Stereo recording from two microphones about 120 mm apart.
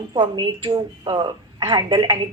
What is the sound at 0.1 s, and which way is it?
A woman's voice, 40° right (ahead or behind).